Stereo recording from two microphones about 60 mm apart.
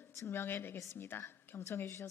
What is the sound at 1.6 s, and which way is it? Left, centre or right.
Speech, left.